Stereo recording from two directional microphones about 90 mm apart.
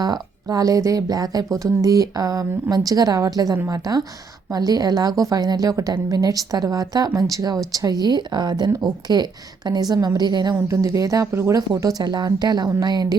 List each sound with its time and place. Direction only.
0.0 s speech: 45° right (ahead or behind)
10.7 s speech: 35° right (ahead or behind)
11.8 s speech: 45° right (ahead or behind)